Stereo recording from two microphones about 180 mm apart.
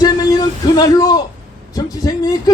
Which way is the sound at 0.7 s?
20° left (ahead or behind).